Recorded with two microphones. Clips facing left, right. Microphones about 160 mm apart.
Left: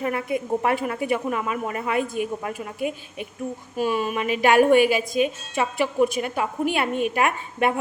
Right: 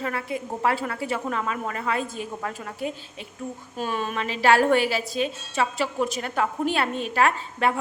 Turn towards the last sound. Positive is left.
turn(degrees=15)  # may be behind; listen again after turning